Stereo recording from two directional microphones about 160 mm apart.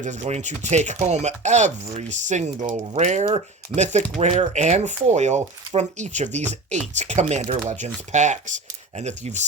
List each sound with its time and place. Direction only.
0.0 s speech: 45° right (ahead or behind)